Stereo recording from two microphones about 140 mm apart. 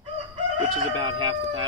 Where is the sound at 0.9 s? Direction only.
35° right (ahead or behind).